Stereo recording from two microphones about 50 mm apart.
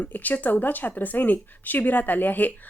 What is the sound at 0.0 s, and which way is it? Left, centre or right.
Speech, left.